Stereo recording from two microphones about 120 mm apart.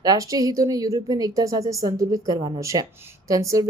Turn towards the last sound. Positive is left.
turn(degrees=-30)  # may be behind; listen again after turning